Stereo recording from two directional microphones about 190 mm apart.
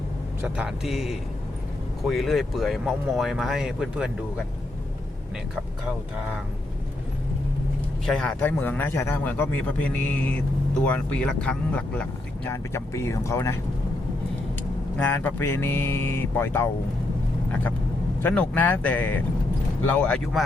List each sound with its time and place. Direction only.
0.4 s speech: 5° right (ahead or behind)
8.0 s speech: 5° left (ahead or behind)
14.9 s speech: 10° left (ahead or behind)